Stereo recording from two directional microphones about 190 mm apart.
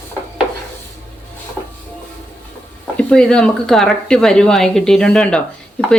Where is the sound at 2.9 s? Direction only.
5° left (ahead or behind).